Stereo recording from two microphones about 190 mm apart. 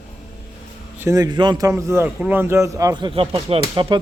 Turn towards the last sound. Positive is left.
turn(degrees=-25)  # may be behind; listen again after turning